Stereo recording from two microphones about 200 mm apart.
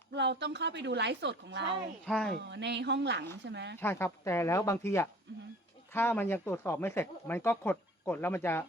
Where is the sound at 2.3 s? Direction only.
60° right (ahead or behind).